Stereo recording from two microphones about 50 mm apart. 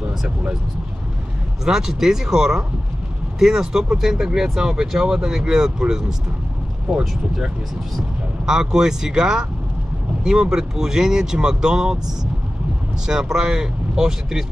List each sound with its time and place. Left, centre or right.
1.6 s speech: centre
13.0 s speech: centre